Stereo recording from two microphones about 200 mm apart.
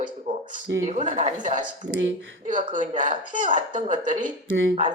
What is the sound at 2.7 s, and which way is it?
Speech, 40° right (ahead or behind).